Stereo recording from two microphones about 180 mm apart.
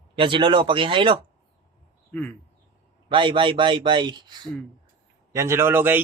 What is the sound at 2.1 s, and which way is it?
Speech, 10° left (ahead or behind).